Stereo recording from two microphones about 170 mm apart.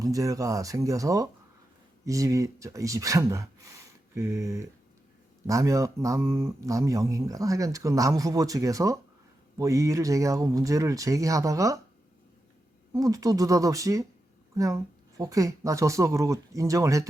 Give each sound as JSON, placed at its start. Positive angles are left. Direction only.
{"t": 0.0, "sound": "speech", "side_deg": -20}
{"t": 12.9, "sound": "speech", "side_deg": -20}